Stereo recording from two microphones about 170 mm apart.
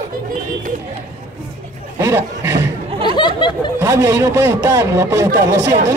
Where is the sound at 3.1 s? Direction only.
25° left (ahead or behind).